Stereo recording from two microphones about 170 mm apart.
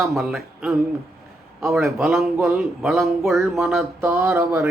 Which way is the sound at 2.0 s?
Centre (ahead or behind).